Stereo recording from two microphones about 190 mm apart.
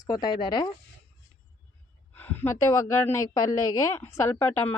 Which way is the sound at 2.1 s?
10° left (ahead or behind).